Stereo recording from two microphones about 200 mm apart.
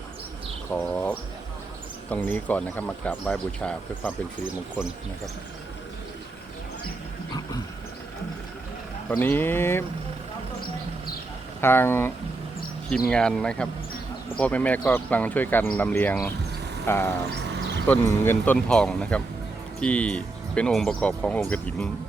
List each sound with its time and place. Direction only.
0.8 s speech: 5° left (ahead or behind)
9.0 s speech: 10° left (ahead or behind)
11.6 s speech: 10° left (ahead or behind)
17.5 s a sound: 60° right (ahead or behind)
18.2 s speech: 10° left (ahead or behind)